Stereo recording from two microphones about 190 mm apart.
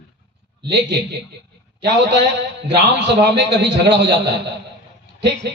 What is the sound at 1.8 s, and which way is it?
A man's voice, 65° right (ahead or behind).